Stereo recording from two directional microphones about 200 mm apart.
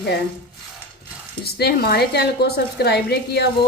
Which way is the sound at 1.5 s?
55° left (ahead or behind).